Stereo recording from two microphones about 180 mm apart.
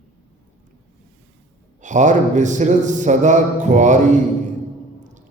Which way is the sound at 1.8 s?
45° right (ahead or behind).